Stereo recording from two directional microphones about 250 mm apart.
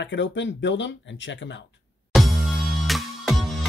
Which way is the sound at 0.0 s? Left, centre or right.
Left.